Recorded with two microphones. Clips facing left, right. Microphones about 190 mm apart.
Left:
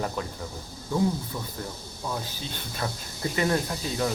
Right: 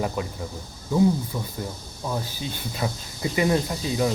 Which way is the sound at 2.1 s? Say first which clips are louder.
Right 4 dB; 10° right (ahead or behind).